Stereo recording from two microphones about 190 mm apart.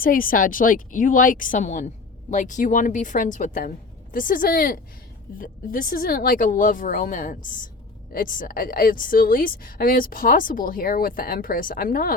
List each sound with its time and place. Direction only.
0.0 s a woman's voice: 50° left (ahead or behind)